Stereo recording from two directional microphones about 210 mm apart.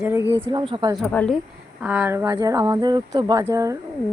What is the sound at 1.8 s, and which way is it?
Speech, 5° right (ahead or behind).